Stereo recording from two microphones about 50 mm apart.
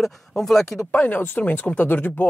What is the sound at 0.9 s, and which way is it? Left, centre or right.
Speech, left.